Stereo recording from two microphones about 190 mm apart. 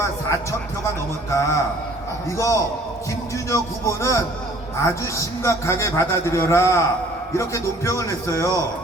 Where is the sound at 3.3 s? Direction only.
15° left (ahead or behind).